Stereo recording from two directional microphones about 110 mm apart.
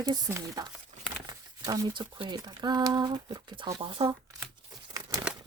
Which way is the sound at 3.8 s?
50° right (ahead or behind).